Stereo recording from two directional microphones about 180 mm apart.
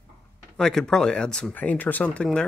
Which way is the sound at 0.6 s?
5° left (ahead or behind).